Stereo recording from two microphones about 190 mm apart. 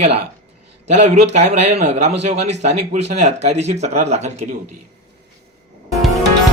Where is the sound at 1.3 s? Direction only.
35° right (ahead or behind).